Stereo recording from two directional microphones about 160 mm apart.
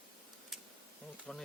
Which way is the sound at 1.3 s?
5° left (ahead or behind).